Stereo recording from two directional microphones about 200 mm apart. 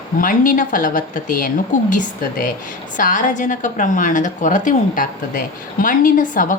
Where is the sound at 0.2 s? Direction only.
40° left (ahead or behind).